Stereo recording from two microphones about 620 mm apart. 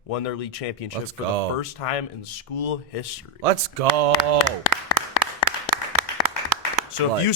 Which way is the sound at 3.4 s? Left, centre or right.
Right.